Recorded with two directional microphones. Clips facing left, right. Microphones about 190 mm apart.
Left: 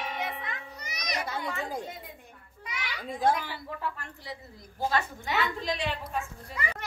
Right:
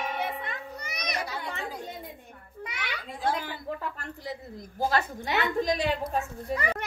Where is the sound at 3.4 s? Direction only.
50° right (ahead or behind).